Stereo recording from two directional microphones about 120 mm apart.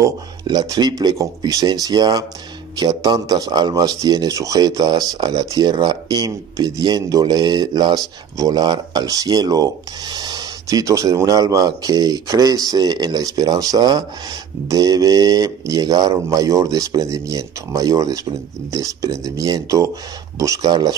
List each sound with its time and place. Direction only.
0.0 s speech: 30° right (ahead or behind)